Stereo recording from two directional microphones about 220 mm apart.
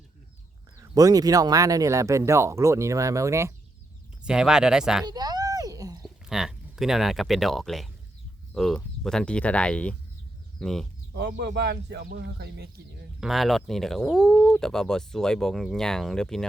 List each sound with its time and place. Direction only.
0.8 s speech: 15° right (ahead or behind)
5.0 s a sound: 20° right (ahead or behind)
6.2 s speech: centre (ahead or behind)
11.1 s speech: 50° right (ahead or behind)
13.1 s speech: centre (ahead or behind)